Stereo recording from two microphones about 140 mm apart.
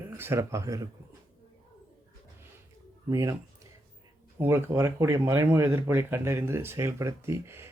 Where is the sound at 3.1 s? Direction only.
20° right (ahead or behind).